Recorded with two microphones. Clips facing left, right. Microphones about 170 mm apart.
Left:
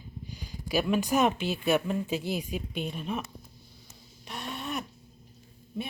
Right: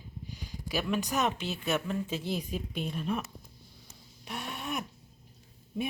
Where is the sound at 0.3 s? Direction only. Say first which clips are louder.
Left 4 dB; centre (ahead or behind).